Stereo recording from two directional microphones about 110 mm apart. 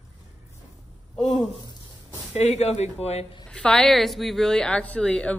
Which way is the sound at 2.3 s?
85° left.